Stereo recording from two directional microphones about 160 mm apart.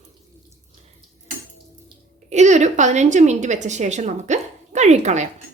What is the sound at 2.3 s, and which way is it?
A woman's voice, 45° right (ahead or behind).